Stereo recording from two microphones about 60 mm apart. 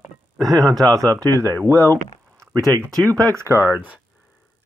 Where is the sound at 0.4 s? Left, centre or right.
Right.